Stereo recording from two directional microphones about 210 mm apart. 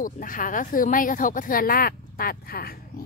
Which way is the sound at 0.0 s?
40° left (ahead or behind).